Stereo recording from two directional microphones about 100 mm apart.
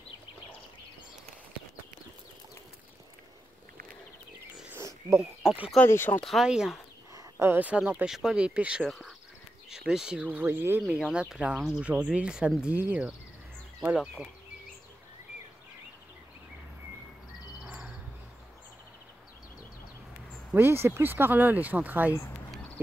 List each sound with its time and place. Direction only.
4.7 s a sound: 25° right (ahead or behind)
5.4 s speech: 5° right (ahead or behind)
5.9 s speech: 20° left (ahead or behind)
6.2 s speech: 5° right (ahead or behind)
7.2 s speech: 25° right (ahead or behind); by 8.8 s 10° right (ahead or behind)
8.8 s speech: centre (ahead or behind); by 10.8 s 20° right (ahead or behind)
10.8 s speech: 5° right (ahead or behind)
13.9 s speech: centre (ahead or behind)
20.5 s speech: 25° right (ahead or behind)